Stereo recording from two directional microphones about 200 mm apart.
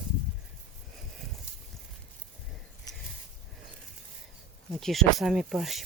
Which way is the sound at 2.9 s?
20° left (ahead or behind).